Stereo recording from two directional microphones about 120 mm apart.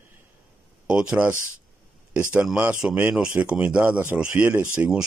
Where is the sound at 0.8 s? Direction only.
10° right (ahead or behind).